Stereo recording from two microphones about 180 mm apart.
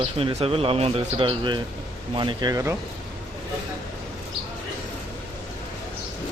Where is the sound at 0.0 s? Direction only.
30° right (ahead or behind).